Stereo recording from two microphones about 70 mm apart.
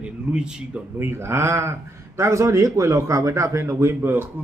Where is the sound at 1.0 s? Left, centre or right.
Right.